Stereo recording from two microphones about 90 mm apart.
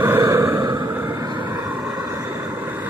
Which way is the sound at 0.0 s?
25° right (ahead or behind).